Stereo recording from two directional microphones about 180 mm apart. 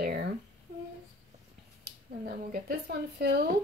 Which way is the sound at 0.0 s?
60° right (ahead or behind).